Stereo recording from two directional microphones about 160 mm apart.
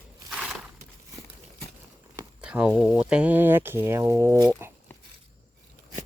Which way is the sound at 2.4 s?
5° right (ahead or behind).